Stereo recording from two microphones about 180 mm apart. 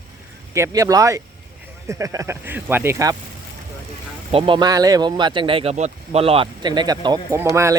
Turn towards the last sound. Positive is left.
turn(degrees=-15)  # may be behind; listen again after turning